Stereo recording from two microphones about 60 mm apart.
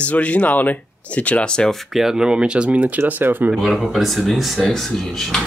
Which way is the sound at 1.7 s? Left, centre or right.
Centre.